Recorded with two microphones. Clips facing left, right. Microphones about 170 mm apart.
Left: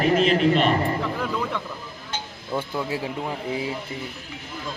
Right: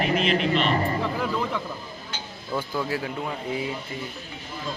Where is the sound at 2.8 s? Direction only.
25° left (ahead or behind).